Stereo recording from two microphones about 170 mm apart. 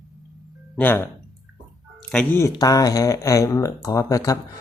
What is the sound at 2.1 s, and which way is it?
Speech, 5° left (ahead or behind).